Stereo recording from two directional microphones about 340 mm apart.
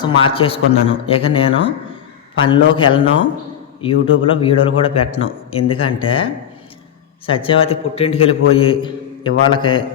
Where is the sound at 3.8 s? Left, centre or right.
Centre.